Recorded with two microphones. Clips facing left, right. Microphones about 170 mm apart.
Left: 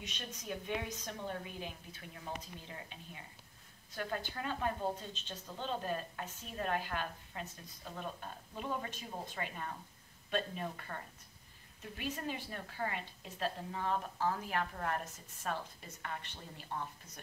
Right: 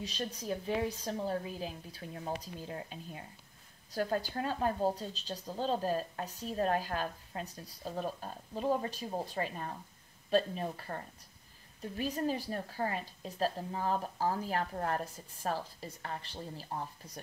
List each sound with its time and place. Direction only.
0.0 s a woman's voice: 35° right (ahead or behind)